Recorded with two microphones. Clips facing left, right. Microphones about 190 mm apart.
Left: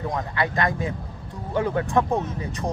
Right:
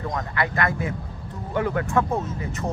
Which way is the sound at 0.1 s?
20° left (ahead or behind).